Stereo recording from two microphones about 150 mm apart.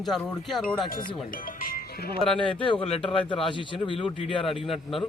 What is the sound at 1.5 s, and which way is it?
Music, 75° left (ahead or behind).